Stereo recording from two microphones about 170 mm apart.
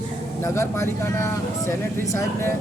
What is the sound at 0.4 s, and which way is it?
Speech, 15° left (ahead or behind).